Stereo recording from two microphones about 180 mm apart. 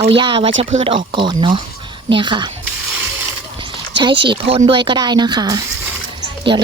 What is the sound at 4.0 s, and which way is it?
Speech, 25° right (ahead or behind).